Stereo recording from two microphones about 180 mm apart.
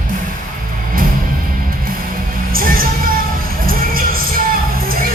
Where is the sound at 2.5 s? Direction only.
50° right (ahead or behind).